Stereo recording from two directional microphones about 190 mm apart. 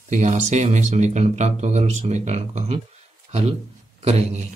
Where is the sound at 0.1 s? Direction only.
40° right (ahead or behind).